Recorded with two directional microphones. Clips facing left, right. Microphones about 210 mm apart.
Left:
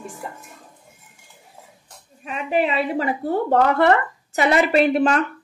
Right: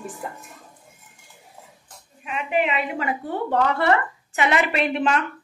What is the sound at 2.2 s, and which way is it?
A woman's voice, 35° left (ahead or behind).